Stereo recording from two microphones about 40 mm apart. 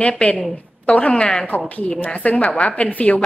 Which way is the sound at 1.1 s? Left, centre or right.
Centre.